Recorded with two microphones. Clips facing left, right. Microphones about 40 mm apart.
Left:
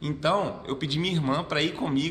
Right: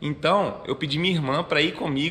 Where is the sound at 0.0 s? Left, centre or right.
Right.